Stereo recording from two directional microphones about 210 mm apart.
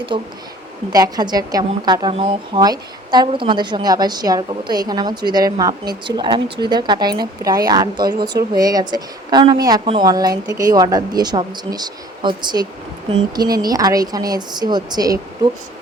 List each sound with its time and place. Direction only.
0.1 s a woman's voice: 20° right (ahead or behind)